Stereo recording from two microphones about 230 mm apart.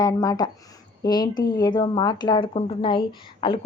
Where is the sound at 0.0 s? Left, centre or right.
Centre.